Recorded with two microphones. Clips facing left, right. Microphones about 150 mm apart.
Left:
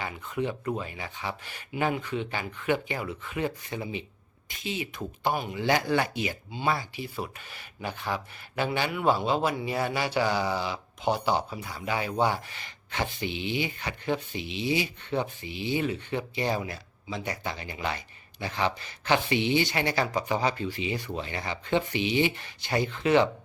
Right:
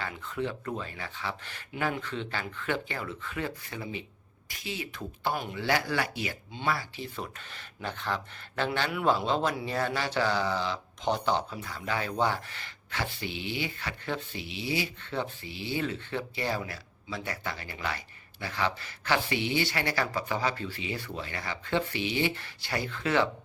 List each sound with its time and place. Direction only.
0.0 s speech: 15° left (ahead or behind)